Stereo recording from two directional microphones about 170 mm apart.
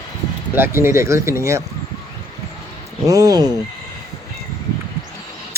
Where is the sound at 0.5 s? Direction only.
15° right (ahead or behind).